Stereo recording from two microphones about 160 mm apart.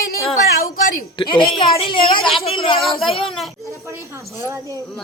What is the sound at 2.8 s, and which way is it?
Speech, centre (ahead or behind).